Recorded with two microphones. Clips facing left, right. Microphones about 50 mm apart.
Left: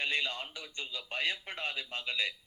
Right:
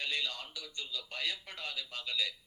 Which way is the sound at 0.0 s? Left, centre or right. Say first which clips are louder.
Left 4 dB; left.